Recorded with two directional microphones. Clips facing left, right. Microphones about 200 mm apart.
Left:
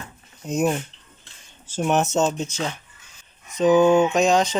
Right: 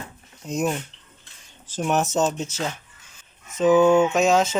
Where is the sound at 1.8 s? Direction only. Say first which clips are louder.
Left 1 dB; centre (ahead or behind).